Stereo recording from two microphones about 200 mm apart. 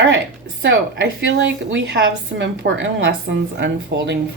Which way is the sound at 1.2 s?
70° right (ahead or behind).